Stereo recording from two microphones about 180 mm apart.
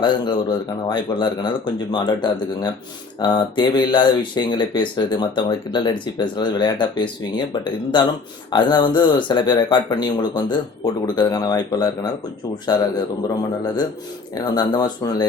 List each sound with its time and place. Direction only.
0.0 s speech: 25° left (ahead or behind)
14.3 s speech: 20° left (ahead or behind)